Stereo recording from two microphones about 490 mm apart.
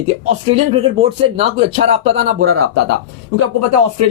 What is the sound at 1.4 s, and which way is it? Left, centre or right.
Speech, centre.